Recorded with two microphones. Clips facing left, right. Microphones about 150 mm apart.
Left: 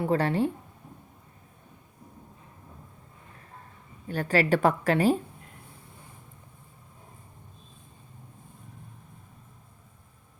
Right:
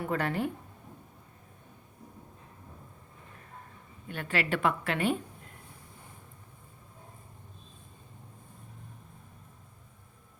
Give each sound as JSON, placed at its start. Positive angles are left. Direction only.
{"t": 0.0, "sound": "a woman's voice", "side_deg": 30}
{"t": 4.1, "sound": "a woman's voice", "side_deg": 40}